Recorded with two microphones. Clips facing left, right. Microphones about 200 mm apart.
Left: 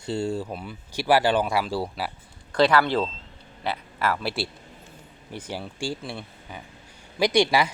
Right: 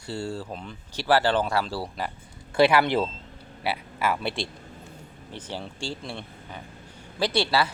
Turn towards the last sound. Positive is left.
turn(degrees=15)  # may be behind; listen again after turning